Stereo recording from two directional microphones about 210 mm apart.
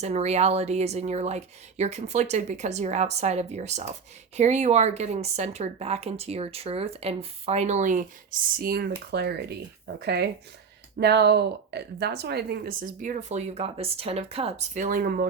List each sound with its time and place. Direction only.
0.0 s speech: 30° right (ahead or behind)